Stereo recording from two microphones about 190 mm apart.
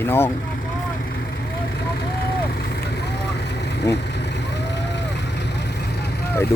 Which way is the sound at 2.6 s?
60° left (ahead or behind).